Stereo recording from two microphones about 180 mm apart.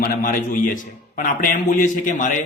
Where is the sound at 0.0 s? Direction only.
50° left (ahead or behind).